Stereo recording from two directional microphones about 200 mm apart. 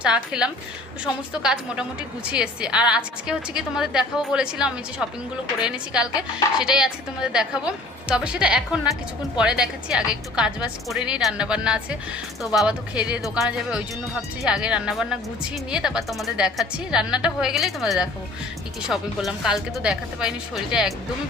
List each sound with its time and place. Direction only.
0.0 s a woman's voice: 5° right (ahead or behind)